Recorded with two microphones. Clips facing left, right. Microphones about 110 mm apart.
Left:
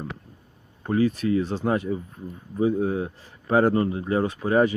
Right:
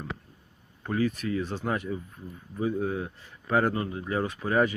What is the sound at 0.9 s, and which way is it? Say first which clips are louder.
Speech: left 6 dB; 30° left (ahead or behind).